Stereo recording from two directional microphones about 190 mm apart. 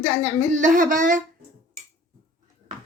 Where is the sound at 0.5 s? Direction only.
45° right (ahead or behind).